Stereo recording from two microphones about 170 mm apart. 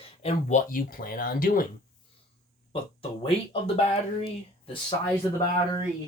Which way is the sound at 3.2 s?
35° left (ahead or behind).